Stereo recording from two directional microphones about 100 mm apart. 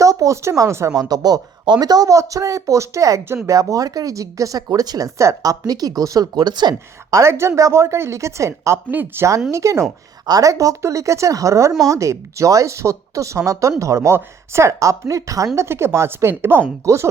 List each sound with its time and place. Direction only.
0.0 s a woman's voice: 35° right (ahead or behind)
7.1 s a woman's voice: 30° right (ahead or behind)
8.9 s a woman's voice: 20° right (ahead or behind)
9.5 s a woman's voice: 30° right (ahead or behind)